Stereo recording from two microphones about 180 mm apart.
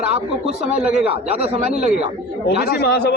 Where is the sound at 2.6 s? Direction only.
60° left (ahead or behind).